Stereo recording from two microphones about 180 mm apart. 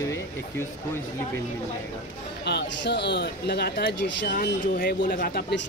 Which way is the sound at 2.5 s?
70° left (ahead or behind).